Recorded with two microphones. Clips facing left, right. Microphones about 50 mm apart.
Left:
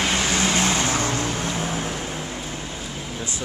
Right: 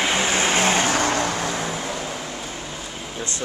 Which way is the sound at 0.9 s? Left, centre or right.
Right.